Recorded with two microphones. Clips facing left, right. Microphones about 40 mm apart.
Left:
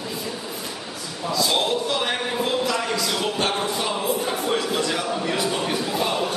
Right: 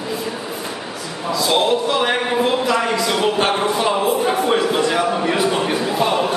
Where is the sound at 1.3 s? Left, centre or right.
Centre.